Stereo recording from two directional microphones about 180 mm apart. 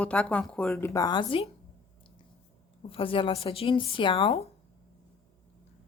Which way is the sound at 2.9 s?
30° left (ahead or behind).